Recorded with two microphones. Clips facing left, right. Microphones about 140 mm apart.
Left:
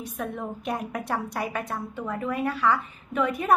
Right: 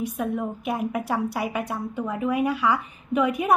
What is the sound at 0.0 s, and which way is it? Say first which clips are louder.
A woman's voice: right 6 dB; 10° right (ahead or behind).